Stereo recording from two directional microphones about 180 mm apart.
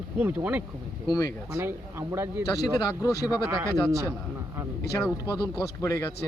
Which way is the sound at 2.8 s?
20° left (ahead or behind).